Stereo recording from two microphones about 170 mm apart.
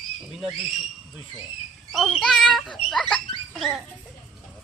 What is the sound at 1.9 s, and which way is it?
Speech, centre (ahead or behind).